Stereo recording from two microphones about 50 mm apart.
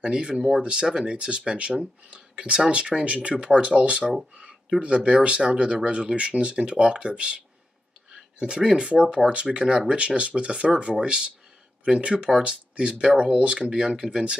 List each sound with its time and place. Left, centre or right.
0.0 s speech: centre